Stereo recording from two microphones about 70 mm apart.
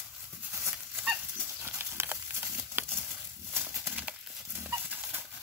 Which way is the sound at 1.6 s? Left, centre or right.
Right.